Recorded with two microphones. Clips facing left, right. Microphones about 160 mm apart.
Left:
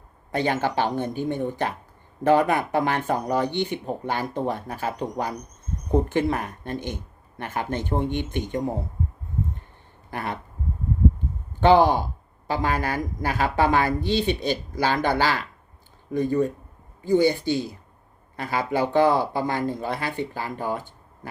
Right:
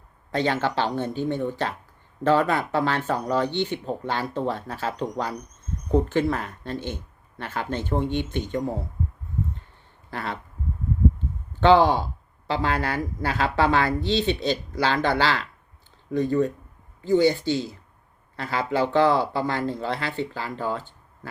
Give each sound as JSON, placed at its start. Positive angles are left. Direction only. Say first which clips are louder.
{"t": 0.3, "sound": "speech", "louder": "even", "side_deg": 10}
{"t": 10.1, "sound": "speech", "louder": "left 1 dB", "side_deg": 15}
{"t": 11.7, "sound": "speech", "louder": "even", "side_deg": 10}
{"t": 19.1, "sound": "speech", "louder": "even", "side_deg": 50}
{"t": 19.4, "sound": "speech", "louder": "even", "side_deg": 15}